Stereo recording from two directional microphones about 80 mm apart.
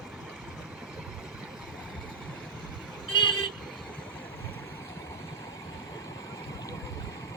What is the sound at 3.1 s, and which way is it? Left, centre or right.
Vehicle, left.